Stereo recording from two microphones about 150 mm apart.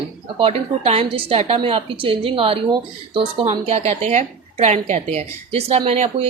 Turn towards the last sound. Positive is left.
turn(degrees=-45)  # may be behind; listen again after turning